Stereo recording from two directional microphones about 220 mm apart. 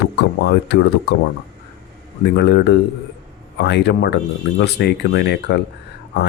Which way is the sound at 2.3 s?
50° left (ahead or behind).